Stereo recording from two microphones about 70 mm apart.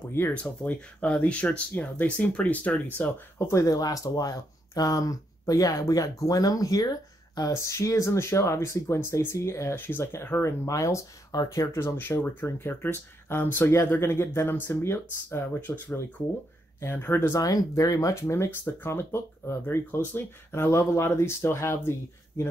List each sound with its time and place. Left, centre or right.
0.3 s speech: centre
3.3 s speech: left
3.6 s speech: left
7.5 s speech: left
9.8 s speech: left
10.7 s speech: left
11.8 s speech: left
17.4 s speech: left